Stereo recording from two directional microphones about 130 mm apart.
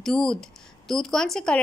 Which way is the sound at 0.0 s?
5° left (ahead or behind).